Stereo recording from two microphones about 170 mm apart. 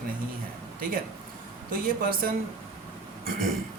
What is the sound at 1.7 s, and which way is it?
Speech, 55° right (ahead or behind).